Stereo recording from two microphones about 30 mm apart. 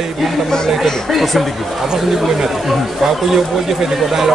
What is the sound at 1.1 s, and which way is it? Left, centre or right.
Speech, centre.